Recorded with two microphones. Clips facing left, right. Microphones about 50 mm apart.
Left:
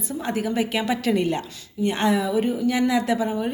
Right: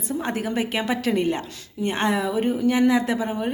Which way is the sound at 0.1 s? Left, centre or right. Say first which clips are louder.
Even; right.